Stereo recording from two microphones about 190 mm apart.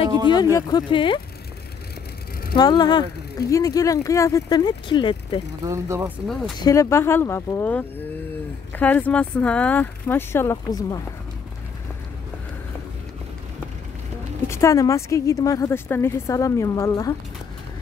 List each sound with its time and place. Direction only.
0.3 s speech: 20° left (ahead or behind)
2.5 s speech: 25° left (ahead or behind)
5.7 s speech: 15° right (ahead or behind)
6.6 s a woman's voice: 15° left (ahead or behind)
14.5 s a woman's voice: 15° left (ahead or behind)